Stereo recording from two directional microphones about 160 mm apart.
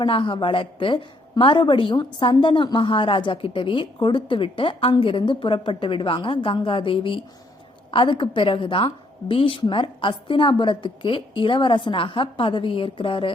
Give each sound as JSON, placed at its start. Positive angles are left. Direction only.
{"t": 0.0, "sound": "a woman's voice", "side_deg": 30}